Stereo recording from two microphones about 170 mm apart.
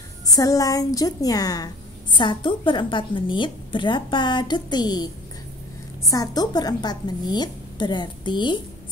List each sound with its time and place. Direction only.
0.3 s a woman's voice: 20° left (ahead or behind)